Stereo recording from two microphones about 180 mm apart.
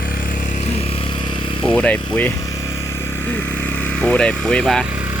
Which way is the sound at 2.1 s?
10° left (ahead or behind).